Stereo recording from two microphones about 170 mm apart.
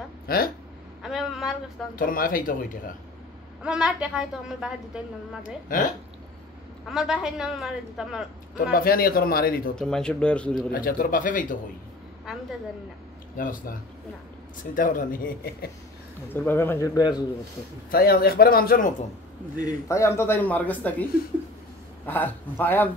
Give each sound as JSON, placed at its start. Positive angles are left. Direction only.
{"t": 0.3, "sound": "speech", "side_deg": 60}
{"t": 1.0, "sound": "a sound", "side_deg": 0}
{"t": 2.0, "sound": "speech", "side_deg": 55}
{"t": 3.6, "sound": "a woman's voice", "side_deg": -5}
{"t": 5.4, "sound": "speech", "side_deg": 50}
{"t": 6.9, "sound": "a woman's voice", "side_deg": -5}
{"t": 8.7, "sound": "speech", "side_deg": 60}
{"t": 9.8, "sound": "a woman's voice", "side_deg": 5}
{"t": 10.7, "sound": "speech", "side_deg": 55}
{"t": 13.4, "sound": "speech", "side_deg": 55}
{"t": 16.3, "sound": "speech", "side_deg": 10}
{"t": 17.9, "sound": "speech", "side_deg": 65}
{"t": 19.6, "sound": "speech", "side_deg": 15}